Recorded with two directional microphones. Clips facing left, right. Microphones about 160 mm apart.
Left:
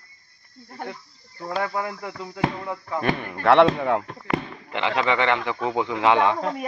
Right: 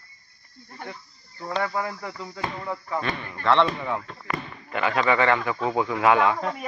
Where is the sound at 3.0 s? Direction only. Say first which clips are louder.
Left 9 dB; 55° left (ahead or behind).